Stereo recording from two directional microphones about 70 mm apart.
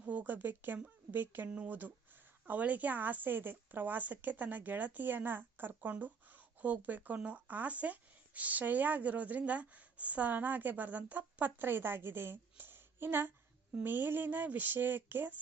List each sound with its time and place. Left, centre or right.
0.0 s speech: right